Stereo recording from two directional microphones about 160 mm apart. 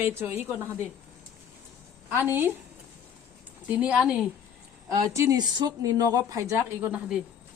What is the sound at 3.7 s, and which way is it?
Speech, 10° right (ahead or behind).